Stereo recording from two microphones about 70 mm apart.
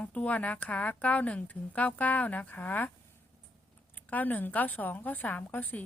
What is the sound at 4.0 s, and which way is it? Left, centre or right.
A woman's voice, left.